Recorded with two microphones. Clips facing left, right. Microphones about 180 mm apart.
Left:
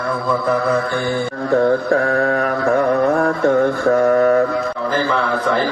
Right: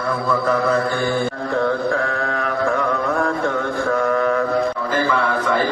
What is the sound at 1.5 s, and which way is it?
Mantra, 45° left (ahead or behind).